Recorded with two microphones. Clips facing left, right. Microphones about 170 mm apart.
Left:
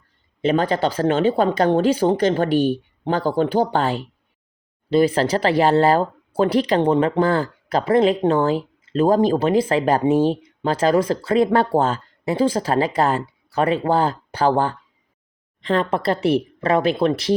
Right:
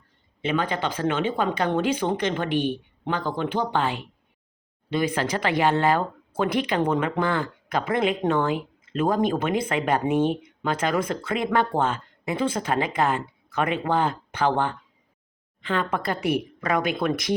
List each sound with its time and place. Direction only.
0.4 s speech: 40° left (ahead or behind)